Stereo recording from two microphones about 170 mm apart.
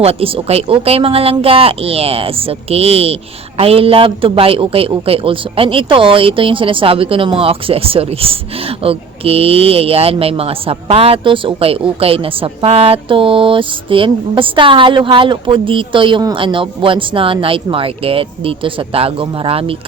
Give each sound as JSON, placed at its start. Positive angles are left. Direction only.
{"t": 0.0, "sound": "a man's voice", "side_deg": -35}